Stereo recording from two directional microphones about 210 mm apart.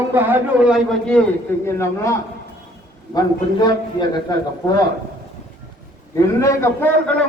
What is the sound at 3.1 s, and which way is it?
Speech, 20° left (ahead or behind).